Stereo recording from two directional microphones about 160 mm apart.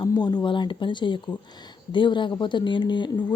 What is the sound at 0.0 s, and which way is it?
Speech, 25° left (ahead or behind).